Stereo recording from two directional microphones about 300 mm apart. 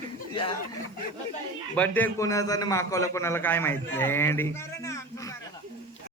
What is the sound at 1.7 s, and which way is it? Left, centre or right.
A man's voice, centre.